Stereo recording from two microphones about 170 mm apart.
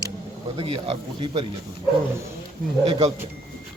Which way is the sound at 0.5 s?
30° right (ahead or behind).